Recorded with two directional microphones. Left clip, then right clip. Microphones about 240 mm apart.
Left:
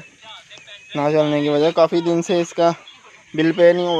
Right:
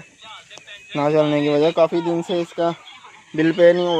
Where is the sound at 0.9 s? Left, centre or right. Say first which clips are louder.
Even; centre; by 2.8 s left.